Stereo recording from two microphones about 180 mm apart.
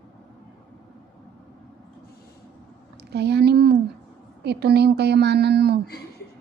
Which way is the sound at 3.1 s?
70° right (ahead or behind).